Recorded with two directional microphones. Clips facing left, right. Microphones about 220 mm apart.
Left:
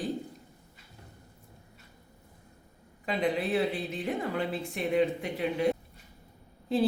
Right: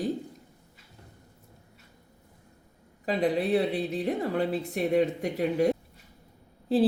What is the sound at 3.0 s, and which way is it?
A woman's voice, 35° right (ahead or behind).